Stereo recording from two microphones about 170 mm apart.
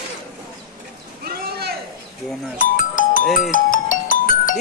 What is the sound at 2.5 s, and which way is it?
Music, 50° left (ahead or behind).